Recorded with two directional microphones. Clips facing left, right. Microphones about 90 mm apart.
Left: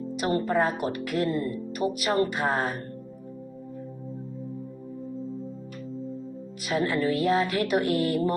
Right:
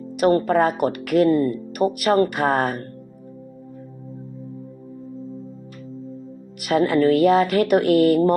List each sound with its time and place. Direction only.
0.2 s speech: 60° right (ahead or behind)
6.6 s speech: 70° right (ahead or behind)